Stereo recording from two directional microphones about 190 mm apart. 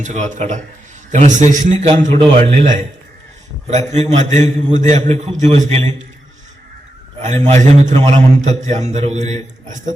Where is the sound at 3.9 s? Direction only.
35° right (ahead or behind).